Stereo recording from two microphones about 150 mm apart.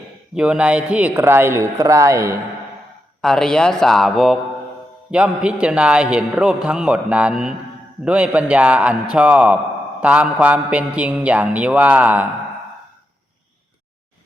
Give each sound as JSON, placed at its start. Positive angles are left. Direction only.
{"t": 0.3, "sound": "a man's voice", "side_deg": -5}
{"t": 3.2, "sound": "a man's voice", "side_deg": 5}